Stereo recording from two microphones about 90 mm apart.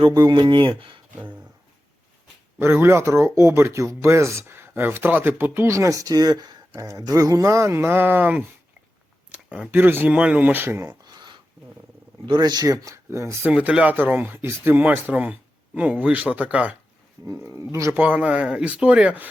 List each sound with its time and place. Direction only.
0.3 s speech: 65° right (ahead or behind)
2.6 s speech: 30° right (ahead or behind); by 6.6 s 50° right (ahead or behind)
6.7 s speech: 40° right (ahead or behind)
10.8 s a sound: 55° right (ahead or behind)
12.3 s speech: 50° right (ahead or behind); by 13.4 s 35° right (ahead or behind)
13.4 s speech: 15° right (ahead or behind)
17.2 s speech: 30° right (ahead or behind)
17.9 s speech: 20° right (ahead or behind)